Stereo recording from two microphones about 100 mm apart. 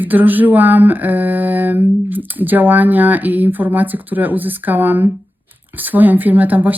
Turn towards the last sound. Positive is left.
turn(degrees=-15)  # may be behind; listen again after turning